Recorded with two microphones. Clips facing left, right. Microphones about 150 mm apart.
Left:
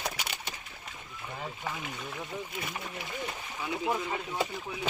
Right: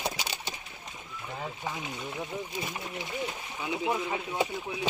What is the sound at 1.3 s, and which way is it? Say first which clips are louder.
Speech: right 1 dB; 10° right (ahead or behind).